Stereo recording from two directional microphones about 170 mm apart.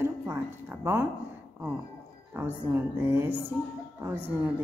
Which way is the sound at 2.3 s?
10° right (ahead or behind).